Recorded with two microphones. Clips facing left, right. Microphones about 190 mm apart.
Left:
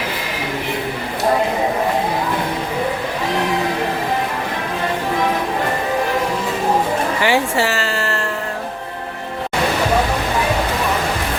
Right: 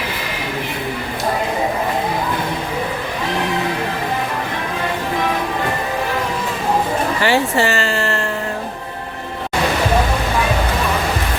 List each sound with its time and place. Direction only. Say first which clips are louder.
7.2 s speech: right 1 dB; 15° left (ahead or behind)